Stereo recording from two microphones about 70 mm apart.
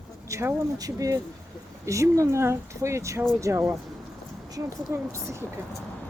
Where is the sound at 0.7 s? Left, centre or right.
Right.